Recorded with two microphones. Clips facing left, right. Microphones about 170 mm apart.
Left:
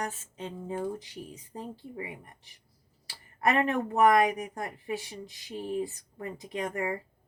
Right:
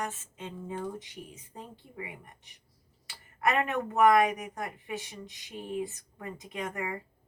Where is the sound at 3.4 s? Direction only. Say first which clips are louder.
Left 2 dB; 35° left (ahead or behind).